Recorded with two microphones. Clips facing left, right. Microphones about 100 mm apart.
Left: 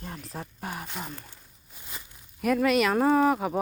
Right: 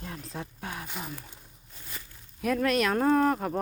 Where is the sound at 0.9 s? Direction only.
5° right (ahead or behind).